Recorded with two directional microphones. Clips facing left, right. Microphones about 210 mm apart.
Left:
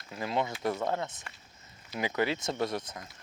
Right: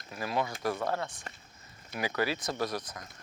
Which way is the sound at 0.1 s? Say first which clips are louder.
Left 1 dB; 25° left (ahead or behind).